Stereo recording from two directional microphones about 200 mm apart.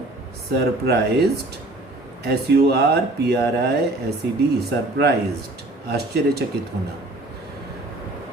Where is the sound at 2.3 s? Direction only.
50° right (ahead or behind).